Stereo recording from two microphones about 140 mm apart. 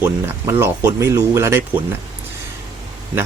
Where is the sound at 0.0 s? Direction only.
15° right (ahead or behind).